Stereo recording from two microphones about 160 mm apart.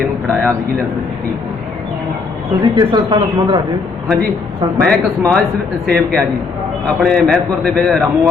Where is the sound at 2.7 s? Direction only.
25° right (ahead or behind).